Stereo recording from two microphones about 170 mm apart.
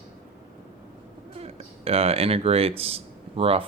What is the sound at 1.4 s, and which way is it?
Speech, 35° right (ahead or behind).